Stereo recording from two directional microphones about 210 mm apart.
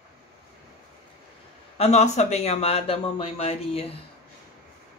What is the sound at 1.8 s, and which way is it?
Speech, 30° left (ahead or behind).